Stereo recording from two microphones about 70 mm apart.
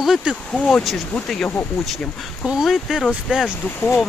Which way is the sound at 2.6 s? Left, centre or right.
Centre.